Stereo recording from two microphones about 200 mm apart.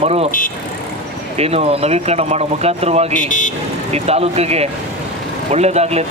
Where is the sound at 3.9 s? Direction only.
30° right (ahead or behind).